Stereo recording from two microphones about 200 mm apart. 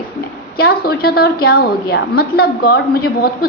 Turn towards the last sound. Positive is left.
turn(degrees=50)  # may be behind; listen again after turning